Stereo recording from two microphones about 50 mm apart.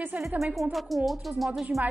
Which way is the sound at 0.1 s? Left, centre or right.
Right.